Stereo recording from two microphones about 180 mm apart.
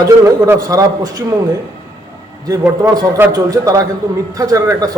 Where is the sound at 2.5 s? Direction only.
20° right (ahead or behind).